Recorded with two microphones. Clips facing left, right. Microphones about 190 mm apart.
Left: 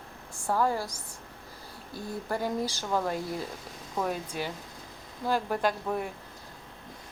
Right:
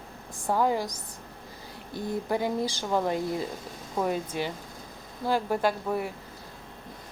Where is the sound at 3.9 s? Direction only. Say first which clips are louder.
Right 3 dB; 5° right (ahead or behind).